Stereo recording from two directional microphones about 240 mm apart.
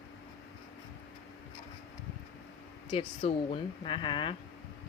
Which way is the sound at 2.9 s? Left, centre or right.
Left.